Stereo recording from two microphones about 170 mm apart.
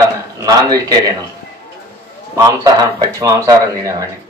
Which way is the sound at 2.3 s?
20° right (ahead or behind).